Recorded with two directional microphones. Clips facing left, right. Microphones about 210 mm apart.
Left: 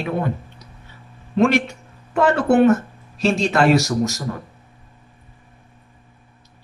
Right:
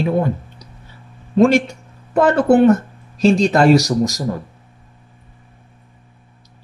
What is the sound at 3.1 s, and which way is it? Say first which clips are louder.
Speech: right 5 dB; 40° right (ahead or behind).